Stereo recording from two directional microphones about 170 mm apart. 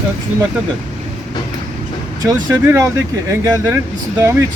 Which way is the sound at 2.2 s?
20° right (ahead or behind).